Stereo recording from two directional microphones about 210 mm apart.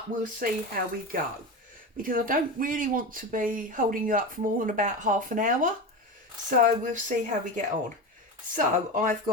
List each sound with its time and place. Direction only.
0.2 s speech: 40° right (ahead or behind)